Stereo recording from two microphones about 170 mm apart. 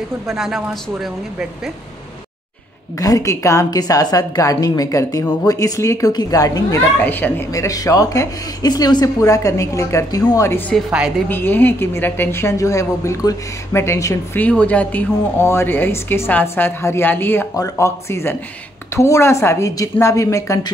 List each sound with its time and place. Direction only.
0.3 s speech: centre (ahead or behind)
3.0 s a woman's voice: 20° left (ahead or behind)
10.9 s speech: 5° right (ahead or behind)
11.2 s a woman's voice: 10° left (ahead or behind)